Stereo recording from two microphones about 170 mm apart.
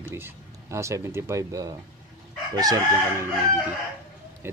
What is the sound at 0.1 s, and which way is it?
A man's voice, 15° right (ahead or behind).